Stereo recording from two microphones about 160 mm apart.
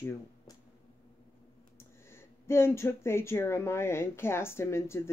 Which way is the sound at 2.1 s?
15° left (ahead or behind).